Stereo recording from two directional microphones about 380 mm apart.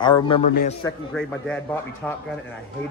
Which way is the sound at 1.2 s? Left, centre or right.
Centre.